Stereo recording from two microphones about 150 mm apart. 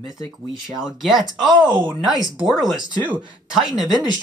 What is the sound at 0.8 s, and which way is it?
Speech, centre (ahead or behind).